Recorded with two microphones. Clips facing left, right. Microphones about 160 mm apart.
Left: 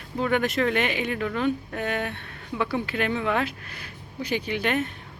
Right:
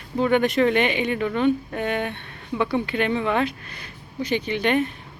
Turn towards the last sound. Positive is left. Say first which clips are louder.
# right 4 dB
turn(degrees=5)  # may be behind; listen again after turning